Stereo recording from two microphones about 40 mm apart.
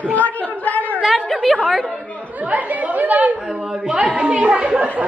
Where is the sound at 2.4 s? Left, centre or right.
Right.